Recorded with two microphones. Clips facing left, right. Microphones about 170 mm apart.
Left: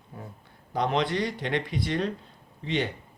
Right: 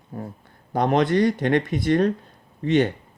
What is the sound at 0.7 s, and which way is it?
Speech, 50° right (ahead or behind).